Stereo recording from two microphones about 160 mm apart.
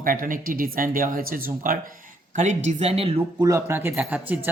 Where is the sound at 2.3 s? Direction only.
50° right (ahead or behind).